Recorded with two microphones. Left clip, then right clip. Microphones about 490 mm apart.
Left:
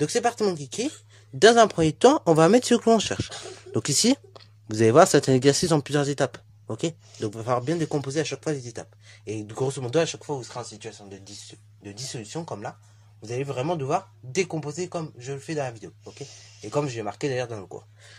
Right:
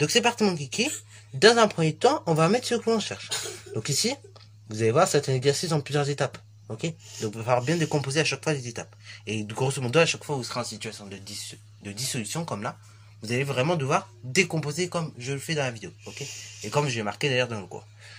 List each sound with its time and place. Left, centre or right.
0.0 s speech: left